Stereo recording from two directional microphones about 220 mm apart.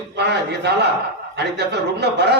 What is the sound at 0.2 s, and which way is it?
A man's voice, 50° right (ahead or behind).